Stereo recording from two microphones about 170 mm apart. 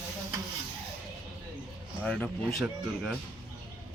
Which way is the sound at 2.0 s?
5° left (ahead or behind).